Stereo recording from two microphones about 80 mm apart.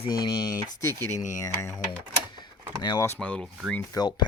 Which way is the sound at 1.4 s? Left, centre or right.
Left.